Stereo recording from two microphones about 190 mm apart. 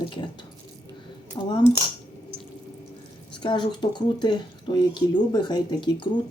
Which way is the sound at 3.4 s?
25° left (ahead or behind).